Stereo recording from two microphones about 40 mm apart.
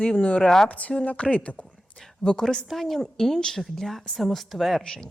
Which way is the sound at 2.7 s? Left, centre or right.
Centre.